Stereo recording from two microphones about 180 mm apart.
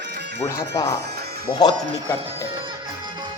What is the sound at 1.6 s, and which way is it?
Speech, 20° left (ahead or behind).